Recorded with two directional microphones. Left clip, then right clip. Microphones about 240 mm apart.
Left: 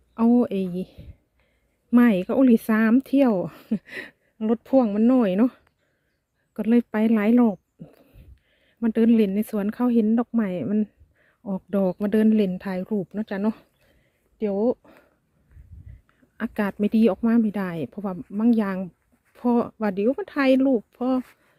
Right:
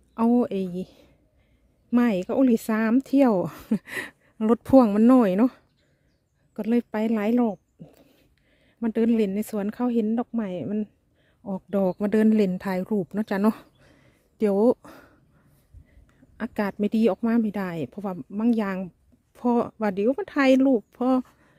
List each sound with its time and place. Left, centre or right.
0.1 s speech: centre; by 15.0 s right
16.0 s speech: centre